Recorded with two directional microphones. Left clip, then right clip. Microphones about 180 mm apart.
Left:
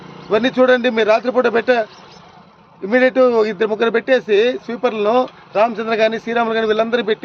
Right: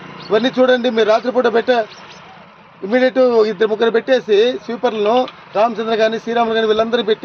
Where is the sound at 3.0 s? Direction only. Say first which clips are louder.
Right 1 dB; 30° left (ahead or behind).